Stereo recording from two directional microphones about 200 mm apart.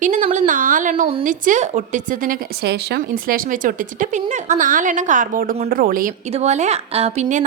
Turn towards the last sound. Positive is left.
turn(degrees=-35)  # may be behind; listen again after turning